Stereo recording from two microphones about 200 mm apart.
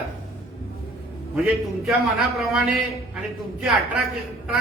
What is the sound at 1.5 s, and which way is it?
A man's voice, centre (ahead or behind).